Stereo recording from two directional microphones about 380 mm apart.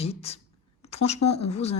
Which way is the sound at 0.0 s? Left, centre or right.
Centre.